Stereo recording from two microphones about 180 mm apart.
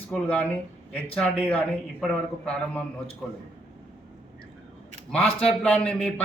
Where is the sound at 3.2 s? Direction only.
Centre (ahead or behind).